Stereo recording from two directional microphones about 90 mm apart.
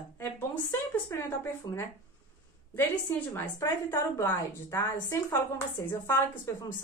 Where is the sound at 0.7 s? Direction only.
25° left (ahead or behind).